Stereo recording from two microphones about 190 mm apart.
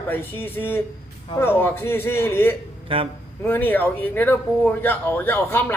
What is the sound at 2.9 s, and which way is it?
Speech, 30° right (ahead or behind).